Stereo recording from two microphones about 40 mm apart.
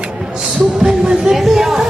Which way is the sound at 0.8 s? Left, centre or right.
Centre.